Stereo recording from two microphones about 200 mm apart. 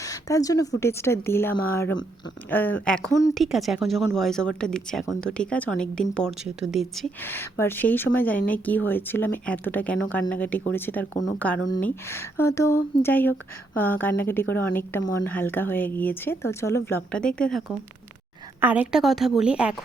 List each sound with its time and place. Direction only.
0.0 s a sound: 15° left (ahead or behind)
0.8 s a woman's voice: 15° left (ahead or behind)
18.6 s speech: 10° right (ahead or behind)